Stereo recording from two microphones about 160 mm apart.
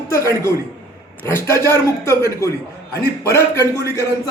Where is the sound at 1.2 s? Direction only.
15° left (ahead or behind).